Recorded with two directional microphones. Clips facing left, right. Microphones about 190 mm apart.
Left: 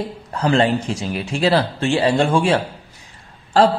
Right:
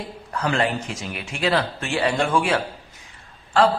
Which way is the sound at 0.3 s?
30° left (ahead or behind).